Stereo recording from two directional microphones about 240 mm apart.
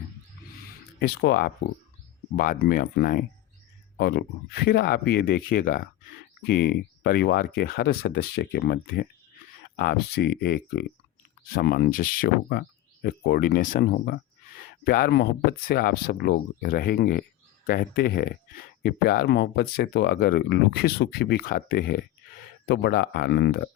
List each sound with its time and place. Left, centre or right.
0.9 s speech: left